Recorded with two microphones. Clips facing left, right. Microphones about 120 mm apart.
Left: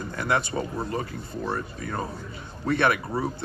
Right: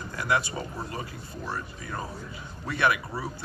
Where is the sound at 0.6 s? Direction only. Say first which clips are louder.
Left 6 dB; 25° left (ahead or behind).